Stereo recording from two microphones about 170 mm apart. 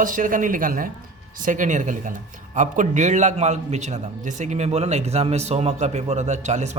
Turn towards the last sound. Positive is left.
turn(degrees=-45)  # may be behind; listen again after turning